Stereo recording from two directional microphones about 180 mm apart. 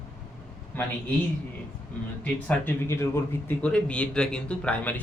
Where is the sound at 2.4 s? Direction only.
10° left (ahead or behind).